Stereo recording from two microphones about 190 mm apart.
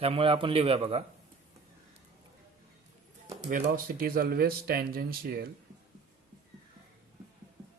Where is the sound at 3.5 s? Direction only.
50° right (ahead or behind).